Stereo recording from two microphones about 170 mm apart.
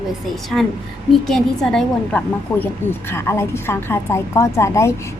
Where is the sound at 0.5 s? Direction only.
5° left (ahead or behind).